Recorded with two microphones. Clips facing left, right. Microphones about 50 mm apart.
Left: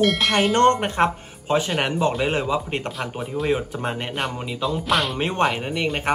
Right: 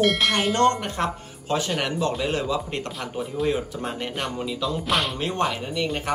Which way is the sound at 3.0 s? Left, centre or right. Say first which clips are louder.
Left 1 dB; centre.